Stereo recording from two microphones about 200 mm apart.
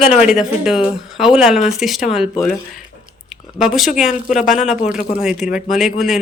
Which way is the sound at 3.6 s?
Centre (ahead or behind).